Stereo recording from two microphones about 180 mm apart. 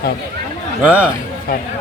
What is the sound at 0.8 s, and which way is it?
Speech, 10° right (ahead or behind).